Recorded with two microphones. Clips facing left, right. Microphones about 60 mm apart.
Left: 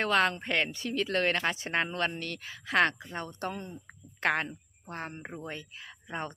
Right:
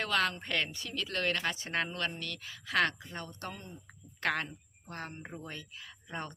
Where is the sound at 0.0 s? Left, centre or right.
Left.